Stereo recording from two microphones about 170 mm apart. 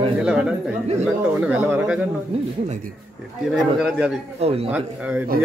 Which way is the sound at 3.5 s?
Centre (ahead or behind).